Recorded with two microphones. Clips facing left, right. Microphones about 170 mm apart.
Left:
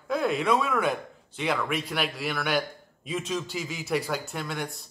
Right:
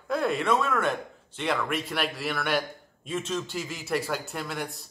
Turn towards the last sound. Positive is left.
turn(degrees=0)  # may be behind; listen again after turning